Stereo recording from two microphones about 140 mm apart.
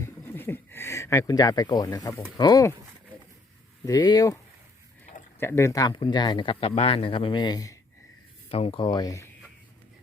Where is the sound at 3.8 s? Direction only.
25° left (ahead or behind).